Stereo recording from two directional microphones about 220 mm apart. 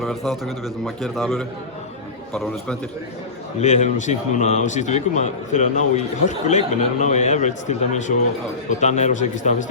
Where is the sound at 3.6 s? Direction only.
30° left (ahead or behind).